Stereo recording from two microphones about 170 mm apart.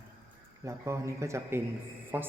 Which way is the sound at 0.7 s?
15° right (ahead or behind).